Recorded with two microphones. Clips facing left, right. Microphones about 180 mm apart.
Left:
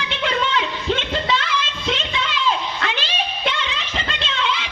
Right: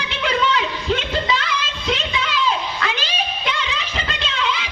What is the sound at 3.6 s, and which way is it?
Music, 40° right (ahead or behind).